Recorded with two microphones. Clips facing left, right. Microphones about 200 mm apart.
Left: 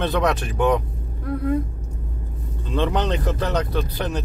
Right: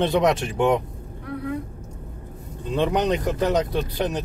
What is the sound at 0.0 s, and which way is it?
Speech, 20° right (ahead or behind).